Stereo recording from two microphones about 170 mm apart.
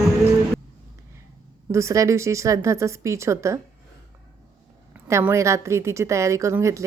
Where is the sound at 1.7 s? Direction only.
15° right (ahead or behind).